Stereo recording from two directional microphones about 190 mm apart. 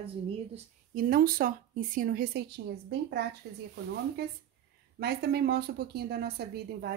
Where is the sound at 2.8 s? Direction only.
65° right (ahead or behind).